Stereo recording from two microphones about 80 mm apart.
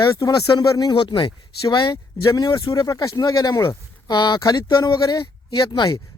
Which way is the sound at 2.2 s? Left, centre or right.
Left.